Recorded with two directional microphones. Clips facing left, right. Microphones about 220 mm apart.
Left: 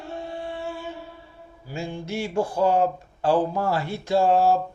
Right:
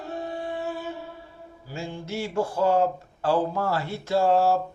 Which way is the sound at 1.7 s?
15° left (ahead or behind).